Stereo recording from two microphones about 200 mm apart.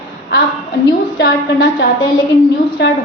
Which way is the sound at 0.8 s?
65° left (ahead or behind).